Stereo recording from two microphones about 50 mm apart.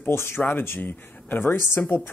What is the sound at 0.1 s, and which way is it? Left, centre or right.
Speech, left.